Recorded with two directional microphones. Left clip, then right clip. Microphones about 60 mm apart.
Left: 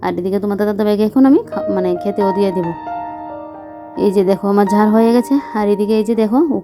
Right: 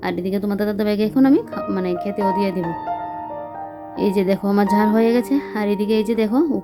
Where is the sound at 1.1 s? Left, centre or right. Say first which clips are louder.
Left 3 dB; left.